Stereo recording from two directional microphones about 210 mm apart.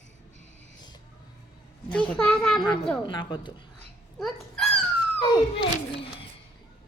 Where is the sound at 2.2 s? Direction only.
5° left (ahead or behind).